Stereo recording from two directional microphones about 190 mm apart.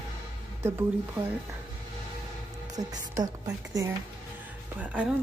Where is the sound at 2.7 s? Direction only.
20° right (ahead or behind).